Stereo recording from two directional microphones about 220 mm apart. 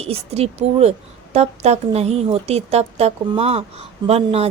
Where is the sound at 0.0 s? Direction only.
25° right (ahead or behind).